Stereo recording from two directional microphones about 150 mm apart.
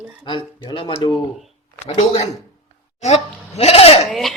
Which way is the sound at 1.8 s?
45° left (ahead or behind).